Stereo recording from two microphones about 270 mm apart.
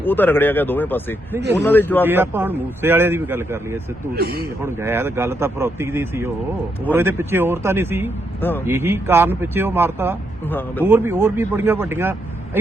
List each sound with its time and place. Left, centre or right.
0.0 s speech: centre
2.0 s a man's voice: centre
4.1 s a man's voice: right
4.6 s a man's voice: centre
8.4 s a man's voice: centre
8.6 s a man's voice: centre